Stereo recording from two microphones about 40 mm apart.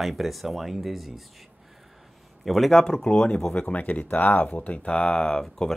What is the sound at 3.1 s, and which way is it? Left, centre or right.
Speech, left.